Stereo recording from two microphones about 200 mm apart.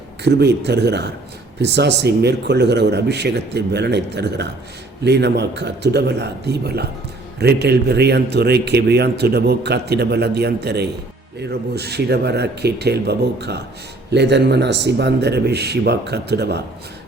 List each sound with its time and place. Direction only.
0.3 s speech: 55° right (ahead or behind)